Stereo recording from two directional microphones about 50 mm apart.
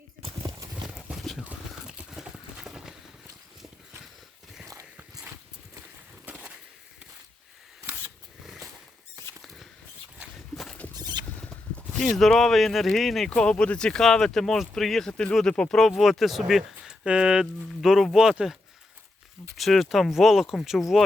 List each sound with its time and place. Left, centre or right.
1.2 s a sound: centre
1.9 s a sound: centre
10.5 s horse: centre
11.9 s speech: centre
13.3 s speech: left
15.9 s speech: centre
17.1 s speech: centre
17.7 s speech: centre
19.5 s speech: centre